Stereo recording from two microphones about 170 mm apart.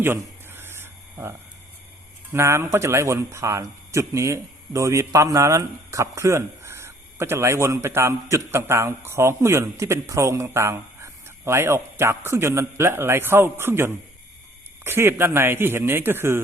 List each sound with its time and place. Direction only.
0.0 s filing: 15° right (ahead or behind)
2.3 s speech: 15° right (ahead or behind)